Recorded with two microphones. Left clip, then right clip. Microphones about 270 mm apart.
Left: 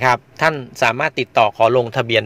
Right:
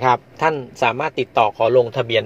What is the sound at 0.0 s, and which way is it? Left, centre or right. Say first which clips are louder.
A man's voice: left 1 dB; left.